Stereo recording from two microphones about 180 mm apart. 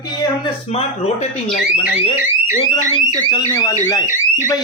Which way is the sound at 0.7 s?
35° left (ahead or behind).